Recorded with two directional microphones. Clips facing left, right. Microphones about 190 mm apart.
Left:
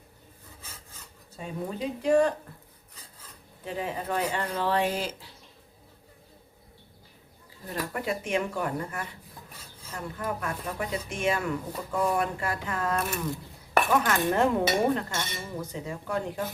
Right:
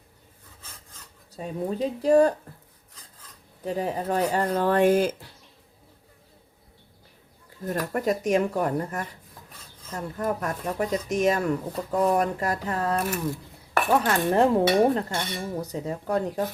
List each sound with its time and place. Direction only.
1.4 s speech: 35° right (ahead or behind)
3.6 s speech: 40° right (ahead or behind)
7.7 s speech: 40° right (ahead or behind)